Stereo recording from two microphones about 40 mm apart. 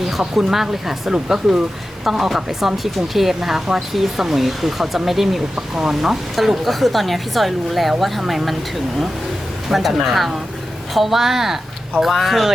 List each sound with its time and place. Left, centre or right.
0.0 s a woman's voice: centre
9.6 s a woman's voice: centre